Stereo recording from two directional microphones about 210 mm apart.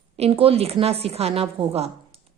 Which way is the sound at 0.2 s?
30° right (ahead or behind).